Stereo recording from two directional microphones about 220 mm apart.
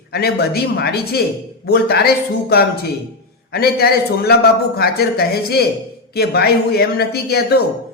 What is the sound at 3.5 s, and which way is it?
A man's voice, 45° left (ahead or behind).